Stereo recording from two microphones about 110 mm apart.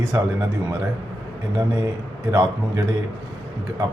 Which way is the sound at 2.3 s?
30° right (ahead or behind).